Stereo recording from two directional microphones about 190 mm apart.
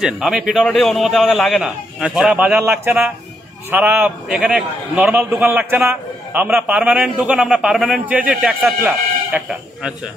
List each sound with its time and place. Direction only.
0.0 s a man's voice: 5° right (ahead or behind)